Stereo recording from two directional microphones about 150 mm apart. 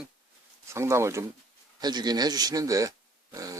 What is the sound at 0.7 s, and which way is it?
Speech, 20° right (ahead or behind).